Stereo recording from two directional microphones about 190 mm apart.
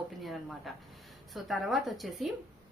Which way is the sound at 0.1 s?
Centre (ahead or behind).